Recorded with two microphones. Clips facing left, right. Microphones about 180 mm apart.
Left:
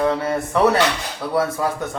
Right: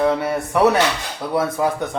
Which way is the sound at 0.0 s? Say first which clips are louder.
Right 1 dB; 10° right (ahead or behind).